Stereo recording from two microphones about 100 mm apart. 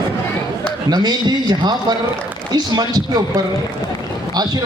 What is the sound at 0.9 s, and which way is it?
A man's voice, 45° right (ahead or behind).